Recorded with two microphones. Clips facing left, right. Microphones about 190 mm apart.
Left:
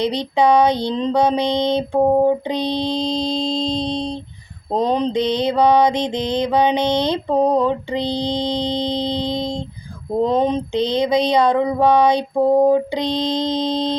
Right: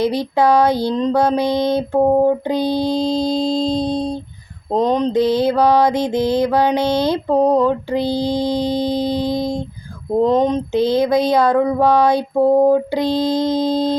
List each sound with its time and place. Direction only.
0.0 s mantra: 5° right (ahead or behind)
5.1 s mantra: 5° right (ahead or behind)
9.3 s mantra: 25° left (ahead or behind)
10.2 s mantra: centre (ahead or behind)